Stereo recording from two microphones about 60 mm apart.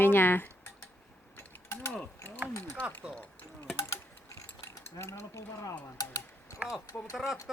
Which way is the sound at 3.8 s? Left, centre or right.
Left.